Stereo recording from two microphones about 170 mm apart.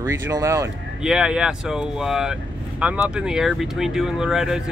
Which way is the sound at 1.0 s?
5° right (ahead or behind).